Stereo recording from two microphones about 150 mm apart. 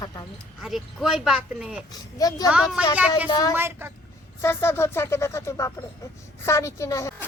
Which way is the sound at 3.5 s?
15° right (ahead or behind).